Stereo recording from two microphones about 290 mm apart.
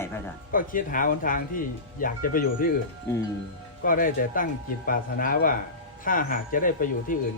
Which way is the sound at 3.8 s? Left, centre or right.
Left.